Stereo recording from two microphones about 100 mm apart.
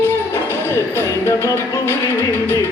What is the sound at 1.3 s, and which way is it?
Music, 35° left (ahead or behind).